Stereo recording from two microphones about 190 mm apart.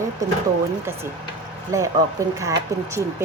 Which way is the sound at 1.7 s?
15° right (ahead or behind).